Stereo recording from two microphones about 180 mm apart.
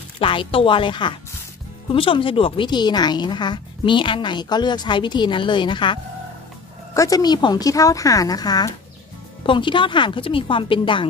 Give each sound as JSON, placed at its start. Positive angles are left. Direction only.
{"t": 0.2, "sound": "speech", "side_deg": 30}